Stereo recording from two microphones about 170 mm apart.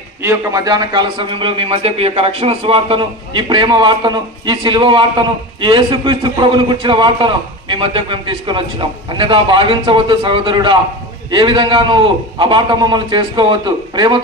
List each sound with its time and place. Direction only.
0.2 s a man's voice: 15° right (ahead or behind)